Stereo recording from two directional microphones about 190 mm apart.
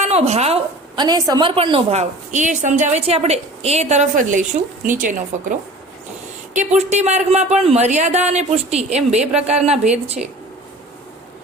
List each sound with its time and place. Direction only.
0.0 s a woman's voice: 35° right (ahead or behind)
1.0 s a woman's voice: 20° right (ahead or behind)